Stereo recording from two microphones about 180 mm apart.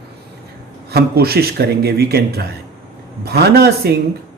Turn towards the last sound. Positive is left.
turn(degrees=-60)  # may be behind; listen again after turning